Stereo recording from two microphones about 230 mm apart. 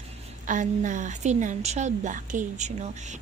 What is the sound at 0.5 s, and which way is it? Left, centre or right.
A woman's voice, right.